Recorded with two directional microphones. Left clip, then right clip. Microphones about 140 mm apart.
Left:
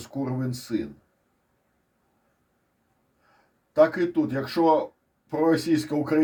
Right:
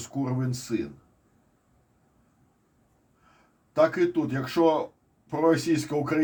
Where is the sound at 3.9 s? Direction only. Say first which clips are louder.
Even; 50° left (ahead or behind).